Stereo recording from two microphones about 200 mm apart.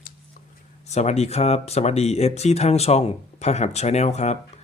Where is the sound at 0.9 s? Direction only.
35° left (ahead or behind).